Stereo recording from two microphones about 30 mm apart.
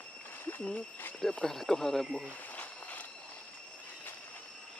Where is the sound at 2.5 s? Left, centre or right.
Left.